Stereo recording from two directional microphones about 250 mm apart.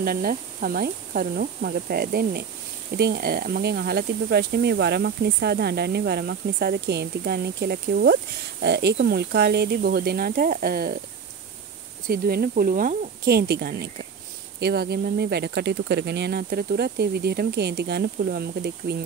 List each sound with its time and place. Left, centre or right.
0.0 s speech: right
12.1 s speech: right